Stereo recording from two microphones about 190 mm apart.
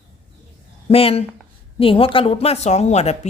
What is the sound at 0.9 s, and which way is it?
A woman's voice, 30° left (ahead or behind).